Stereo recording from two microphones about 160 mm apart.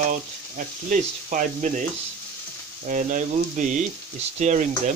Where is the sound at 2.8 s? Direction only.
55° right (ahead or behind).